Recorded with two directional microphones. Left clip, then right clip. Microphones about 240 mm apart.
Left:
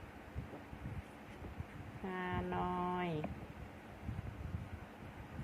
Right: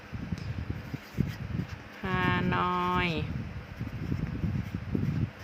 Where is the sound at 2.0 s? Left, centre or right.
Right.